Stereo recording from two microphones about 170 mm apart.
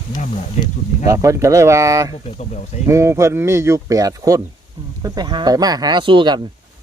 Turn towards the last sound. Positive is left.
turn(degrees=-30)  # may be behind; listen again after turning